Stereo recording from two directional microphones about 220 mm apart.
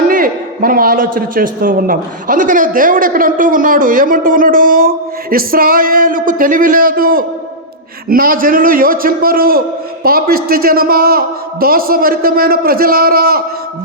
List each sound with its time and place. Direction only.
0.1 s a man's voice: 40° right (ahead or behind)